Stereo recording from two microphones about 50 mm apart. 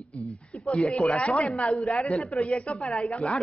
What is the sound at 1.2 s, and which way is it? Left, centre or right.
Speech, left.